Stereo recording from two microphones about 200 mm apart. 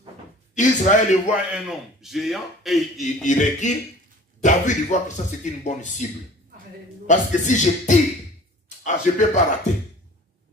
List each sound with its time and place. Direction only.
0.6 s speech: 35° left (ahead or behind)
1.3 s a man's voice: 5° right (ahead or behind)
3.3 s speech: 35° left (ahead or behind)
7.1 s a man's voice: 40° left (ahead or behind)